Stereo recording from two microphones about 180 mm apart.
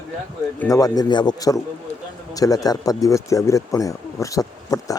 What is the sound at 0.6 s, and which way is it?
Speech, 20° left (ahead or behind).